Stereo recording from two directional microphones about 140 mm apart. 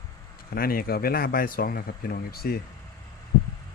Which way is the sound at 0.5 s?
90° left.